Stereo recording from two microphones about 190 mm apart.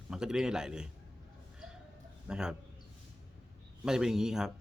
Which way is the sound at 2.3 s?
5° right (ahead or behind).